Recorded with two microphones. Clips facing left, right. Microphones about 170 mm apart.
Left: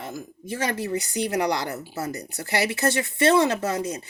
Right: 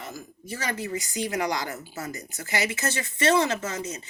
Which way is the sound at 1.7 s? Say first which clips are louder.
Left 5 dB; 35° left (ahead or behind).